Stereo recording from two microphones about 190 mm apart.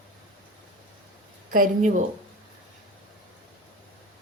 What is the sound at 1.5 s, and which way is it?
Speech, 45° right (ahead or behind).